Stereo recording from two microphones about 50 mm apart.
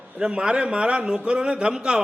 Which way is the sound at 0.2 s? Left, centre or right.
Centre.